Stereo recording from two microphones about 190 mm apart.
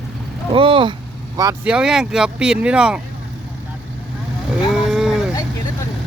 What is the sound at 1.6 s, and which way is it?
Speech, 5° right (ahead or behind).